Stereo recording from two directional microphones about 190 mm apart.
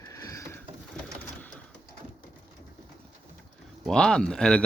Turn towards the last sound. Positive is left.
turn(degrees=5)  # may be behind; listen again after turning